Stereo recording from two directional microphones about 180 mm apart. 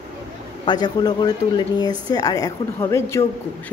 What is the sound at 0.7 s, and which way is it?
A woman's voice, 25° left (ahead or behind).